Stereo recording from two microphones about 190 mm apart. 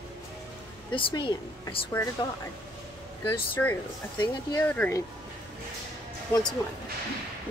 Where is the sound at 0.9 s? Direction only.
25° left (ahead or behind).